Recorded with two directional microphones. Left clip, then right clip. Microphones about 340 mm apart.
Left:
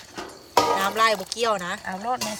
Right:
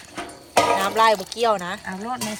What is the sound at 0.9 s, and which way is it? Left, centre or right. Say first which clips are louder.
Speech: right 3 dB; centre.